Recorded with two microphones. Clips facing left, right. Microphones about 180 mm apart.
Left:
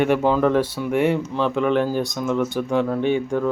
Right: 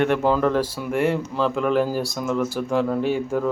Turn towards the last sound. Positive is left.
turn(degrees=-5)  # may be behind; listen again after turning